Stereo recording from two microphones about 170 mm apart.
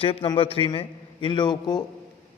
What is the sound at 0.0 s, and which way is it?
A man's voice, 30° left (ahead or behind).